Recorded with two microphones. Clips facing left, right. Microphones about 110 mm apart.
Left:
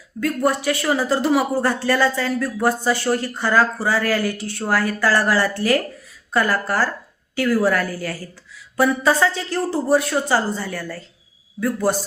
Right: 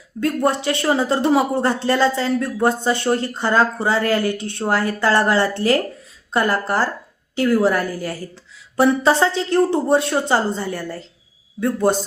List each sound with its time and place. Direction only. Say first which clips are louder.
0.2 s speech: right 1 dB; 25° right (ahead or behind)